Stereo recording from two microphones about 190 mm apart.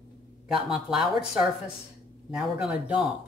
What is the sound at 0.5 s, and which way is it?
Speech, centre (ahead or behind).